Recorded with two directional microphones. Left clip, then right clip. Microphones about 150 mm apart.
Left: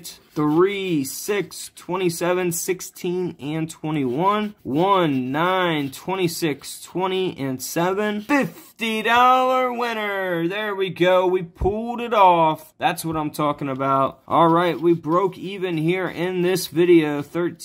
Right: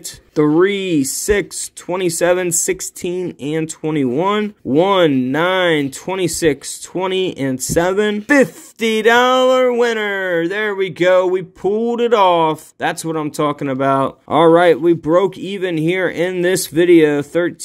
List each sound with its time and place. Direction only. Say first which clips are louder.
0.4 s speech: right 6 dB; 35° right (ahead or behind)